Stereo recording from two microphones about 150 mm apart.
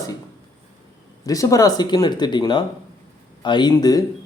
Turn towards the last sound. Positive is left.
turn(degrees=25)  # may be behind; listen again after turning